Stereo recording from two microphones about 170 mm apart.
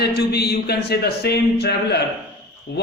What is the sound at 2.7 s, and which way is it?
Speech, 85° left.